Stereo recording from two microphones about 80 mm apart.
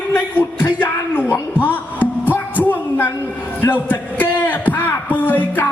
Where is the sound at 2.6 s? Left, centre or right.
Left.